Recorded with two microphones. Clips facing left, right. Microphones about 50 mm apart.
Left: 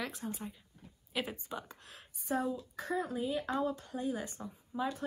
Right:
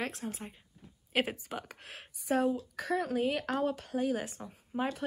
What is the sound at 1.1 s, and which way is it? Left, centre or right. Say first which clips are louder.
Speech: right 6 dB; right.